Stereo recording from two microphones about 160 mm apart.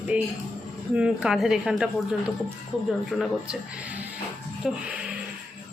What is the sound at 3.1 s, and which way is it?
Speech, 5° right (ahead or behind).